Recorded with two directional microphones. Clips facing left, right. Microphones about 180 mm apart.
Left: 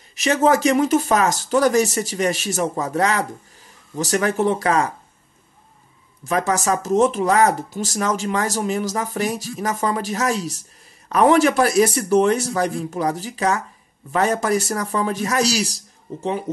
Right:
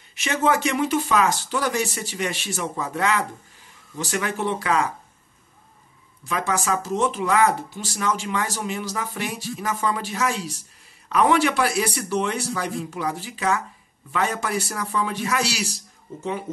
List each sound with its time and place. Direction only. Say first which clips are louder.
0.1 s speech: left 5 dB; 40° left (ahead or behind)
6.2 s speech: left 5 dB; 45° left (ahead or behind)